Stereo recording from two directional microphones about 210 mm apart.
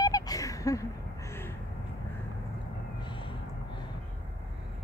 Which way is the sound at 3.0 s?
25° left (ahead or behind).